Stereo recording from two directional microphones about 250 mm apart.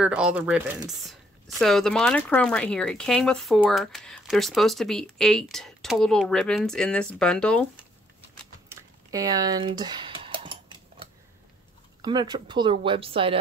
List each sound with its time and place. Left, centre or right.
0.0 s speech: centre
8.6 s a sound: centre
12.0 s speech: centre